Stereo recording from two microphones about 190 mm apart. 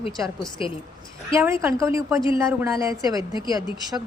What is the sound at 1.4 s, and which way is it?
A woman's voice, 15° right (ahead or behind).